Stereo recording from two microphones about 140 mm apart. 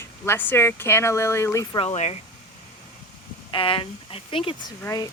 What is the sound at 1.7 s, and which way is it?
Speech, 45° left (ahead or behind).